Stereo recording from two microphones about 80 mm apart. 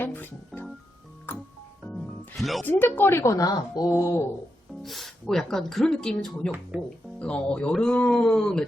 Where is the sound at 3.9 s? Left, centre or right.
Left.